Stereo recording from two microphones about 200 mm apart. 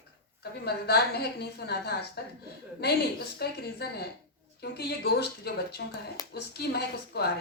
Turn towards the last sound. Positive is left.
turn(degrees=55)  # may be behind; listen again after turning